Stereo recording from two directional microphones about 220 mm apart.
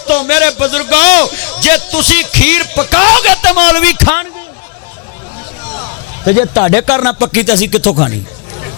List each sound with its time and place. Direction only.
0.1 s a man's voice: 10° left (ahead or behind)
5.7 s a man's voice: 20° left (ahead or behind)